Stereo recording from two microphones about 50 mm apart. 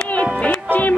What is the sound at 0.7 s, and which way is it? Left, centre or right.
Music, left.